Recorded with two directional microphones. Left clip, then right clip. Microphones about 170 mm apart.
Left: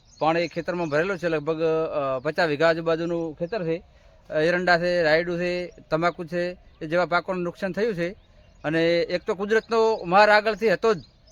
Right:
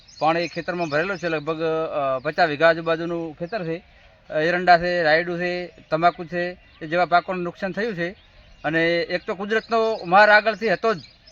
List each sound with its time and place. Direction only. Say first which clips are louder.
0.2 s a man's voice: right 2 dB; 30° left (ahead or behind)